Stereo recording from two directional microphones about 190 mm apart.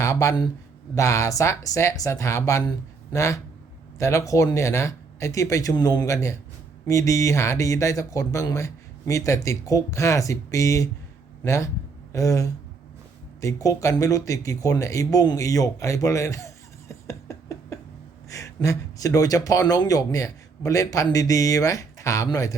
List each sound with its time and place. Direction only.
0.0 s speech: 15° left (ahead or behind)
16.9 s a sound: 15° left (ahead or behind)
18.3 s speech: 15° left (ahead or behind)